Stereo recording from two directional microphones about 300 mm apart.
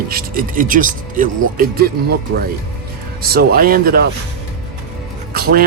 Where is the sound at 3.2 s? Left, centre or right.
Right.